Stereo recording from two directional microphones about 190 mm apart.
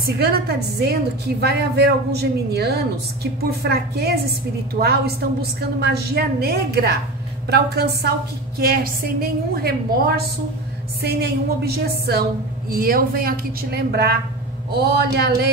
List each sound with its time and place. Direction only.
0.0 s a woman's voice: 55° right (ahead or behind)